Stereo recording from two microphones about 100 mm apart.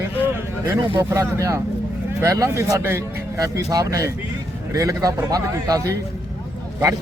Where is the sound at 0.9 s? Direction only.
30° right (ahead or behind).